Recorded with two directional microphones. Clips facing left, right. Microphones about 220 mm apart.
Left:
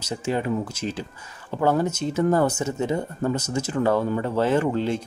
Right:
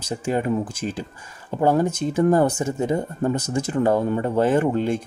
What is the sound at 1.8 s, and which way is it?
Speech, 55° right (ahead or behind).